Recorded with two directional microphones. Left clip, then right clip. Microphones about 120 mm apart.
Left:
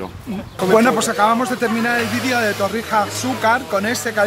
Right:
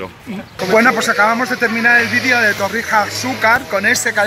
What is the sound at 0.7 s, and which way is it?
Speech, 20° left (ahead or behind).